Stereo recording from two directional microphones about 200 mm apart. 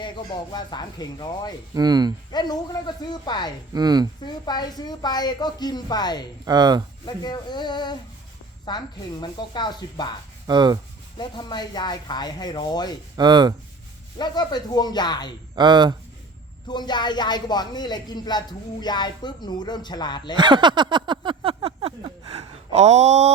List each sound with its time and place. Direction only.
0.5 s speech: 20° left (ahead or behind)
1.7 s speech: 20° right (ahead or behind)
2.3 s speech: 20° left (ahead or behind)
3.7 s speech: 20° right (ahead or behind)
4.2 s speech: 20° left (ahead or behind)
6.4 s speech: 20° right (ahead or behind)
7.0 s speech: 20° left (ahead or behind)
10.4 s speech: 20° right (ahead or behind)
11.2 s speech: 20° left (ahead or behind)
13.1 s speech: 20° right (ahead or behind)
14.2 s speech: 20° left (ahead or behind)
15.5 s speech: 20° right (ahead or behind)
16.6 s speech: 20° left (ahead or behind)
20.3 s a sound: 20° right (ahead or behind)